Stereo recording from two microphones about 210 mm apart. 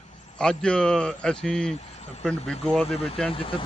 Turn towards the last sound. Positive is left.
turn(degrees=25)  # may be behind; listen again after turning